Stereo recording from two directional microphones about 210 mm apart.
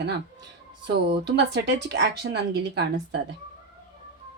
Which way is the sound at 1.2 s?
55° right (ahead or behind).